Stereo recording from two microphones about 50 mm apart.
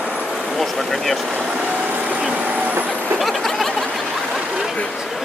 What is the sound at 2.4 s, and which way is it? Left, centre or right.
Vehicle, right.